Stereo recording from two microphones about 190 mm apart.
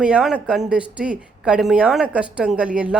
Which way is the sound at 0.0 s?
5° right (ahead or behind).